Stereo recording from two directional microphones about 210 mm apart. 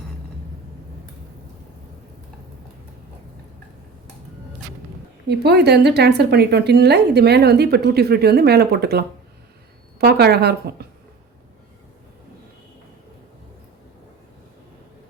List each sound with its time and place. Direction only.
5.3 s a woman's voice: 50° right (ahead or behind)